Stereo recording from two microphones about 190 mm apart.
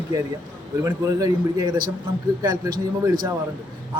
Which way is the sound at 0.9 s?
15° right (ahead or behind).